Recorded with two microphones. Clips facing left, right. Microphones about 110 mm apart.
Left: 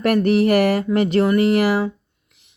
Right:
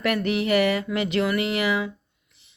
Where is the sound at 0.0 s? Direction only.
40° left (ahead or behind).